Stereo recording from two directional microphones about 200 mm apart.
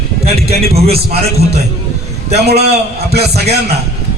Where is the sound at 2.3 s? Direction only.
55° right (ahead or behind).